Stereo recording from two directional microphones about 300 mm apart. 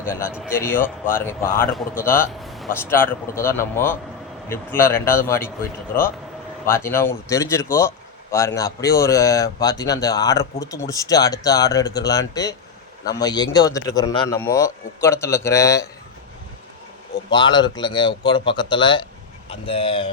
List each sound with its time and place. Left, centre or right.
0.0 s a man's voice: centre
0.3 s a man's voice: centre
0.5 s speech: centre
6.7 s speech: centre
17.3 s speech: centre